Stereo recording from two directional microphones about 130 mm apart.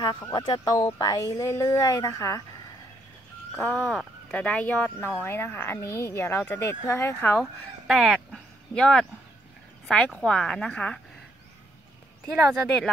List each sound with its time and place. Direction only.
0.0 s speech: 35° left (ahead or behind)
3.5 s speech: 15° left (ahead or behind)
7.8 s a sound: centre (ahead or behind)
9.8 s a woman's voice: 5° left (ahead or behind)